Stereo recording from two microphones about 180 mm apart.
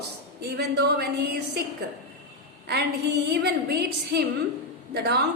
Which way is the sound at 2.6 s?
65° right (ahead or behind).